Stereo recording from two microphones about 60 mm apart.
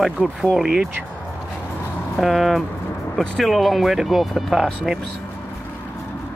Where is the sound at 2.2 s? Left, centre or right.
Centre.